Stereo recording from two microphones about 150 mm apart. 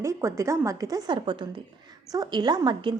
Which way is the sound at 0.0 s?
20° right (ahead or behind).